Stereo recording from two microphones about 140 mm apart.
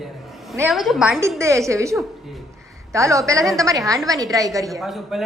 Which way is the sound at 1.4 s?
20° right (ahead or behind).